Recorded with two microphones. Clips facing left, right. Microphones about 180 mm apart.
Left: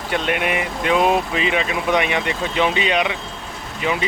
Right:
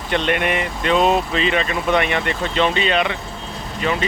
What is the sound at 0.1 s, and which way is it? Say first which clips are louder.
Speech: right 2 dB; 5° left (ahead or behind).